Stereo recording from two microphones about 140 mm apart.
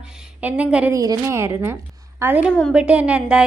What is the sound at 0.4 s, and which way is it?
Speech, 10° right (ahead or behind).